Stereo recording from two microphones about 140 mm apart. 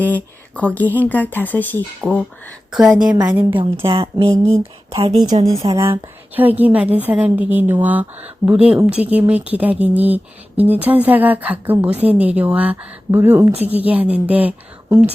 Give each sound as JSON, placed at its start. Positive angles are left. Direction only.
{"t": 0.0, "sound": "speech", "side_deg": 10}
{"t": 2.7, "sound": "a woman's voice", "side_deg": -5}
{"t": 3.8, "sound": "a woman's voice", "side_deg": -40}